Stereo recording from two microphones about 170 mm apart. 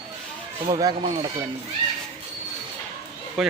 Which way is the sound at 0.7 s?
25° right (ahead or behind).